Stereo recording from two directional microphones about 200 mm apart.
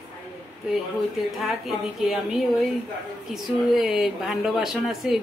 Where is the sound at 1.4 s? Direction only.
Centre (ahead or behind).